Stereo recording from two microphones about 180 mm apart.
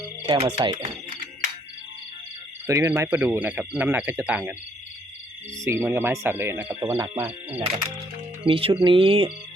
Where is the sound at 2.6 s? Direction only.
15° right (ahead or behind).